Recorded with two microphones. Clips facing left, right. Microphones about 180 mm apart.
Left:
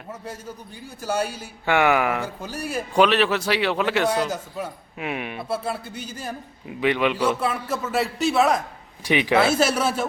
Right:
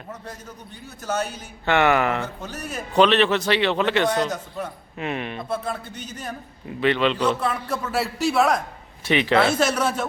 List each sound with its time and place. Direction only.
0.1 s a man's voice: 10° left (ahead or behind)
9.0 s a man's voice: 15° left (ahead or behind)